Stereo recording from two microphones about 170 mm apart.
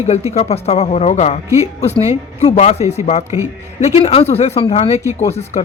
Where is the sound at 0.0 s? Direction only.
40° left (ahead or behind).